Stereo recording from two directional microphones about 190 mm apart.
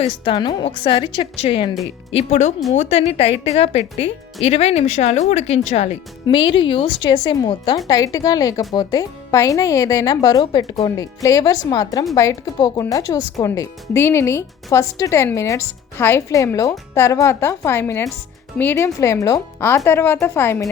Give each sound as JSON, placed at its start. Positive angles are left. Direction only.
{"t": 0.0, "sound": "speech", "side_deg": 25}